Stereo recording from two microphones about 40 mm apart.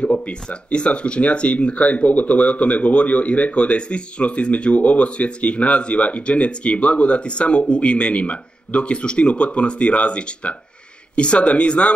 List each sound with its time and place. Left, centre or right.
0.0 s speech: left